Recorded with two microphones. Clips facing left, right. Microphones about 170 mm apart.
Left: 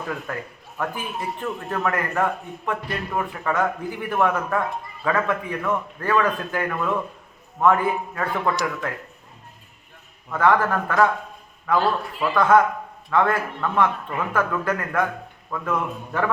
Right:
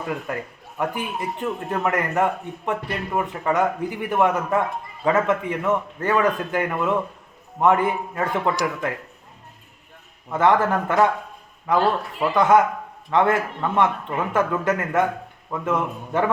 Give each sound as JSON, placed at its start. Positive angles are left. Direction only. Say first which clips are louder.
{"t": 0.3, "sound": "a man's voice", "louder": "right 2 dB", "side_deg": -15}
{"t": 10.2, "sound": "a man's voice", "louder": "right 1 dB", "side_deg": -20}